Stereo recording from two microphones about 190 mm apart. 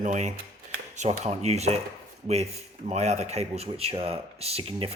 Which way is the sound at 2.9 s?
35° right (ahead or behind).